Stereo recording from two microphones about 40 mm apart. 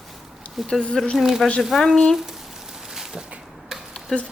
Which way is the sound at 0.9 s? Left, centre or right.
Centre.